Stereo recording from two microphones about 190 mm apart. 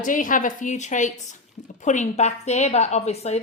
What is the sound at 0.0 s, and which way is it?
Speech, 45° left (ahead or behind).